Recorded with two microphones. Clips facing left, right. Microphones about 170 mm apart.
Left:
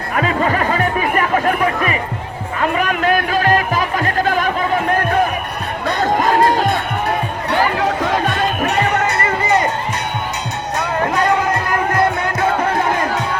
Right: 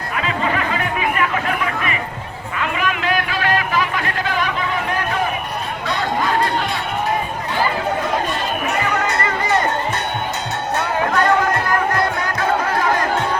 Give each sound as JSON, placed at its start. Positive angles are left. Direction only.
{"t": 0.1, "sound": "music", "side_deg": 45}
{"t": 2.6, "sound": "music", "side_deg": 45}
{"t": 5.8, "sound": "run", "side_deg": 50}
{"t": 7.5, "sound": "chatter", "side_deg": 85}